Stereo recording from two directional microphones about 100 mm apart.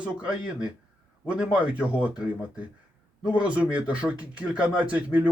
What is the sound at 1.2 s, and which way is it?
Speech, 10° right (ahead or behind).